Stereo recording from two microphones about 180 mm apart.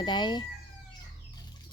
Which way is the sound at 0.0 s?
25° left (ahead or behind).